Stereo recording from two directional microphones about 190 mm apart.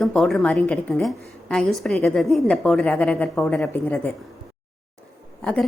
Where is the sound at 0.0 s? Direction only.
Centre (ahead or behind).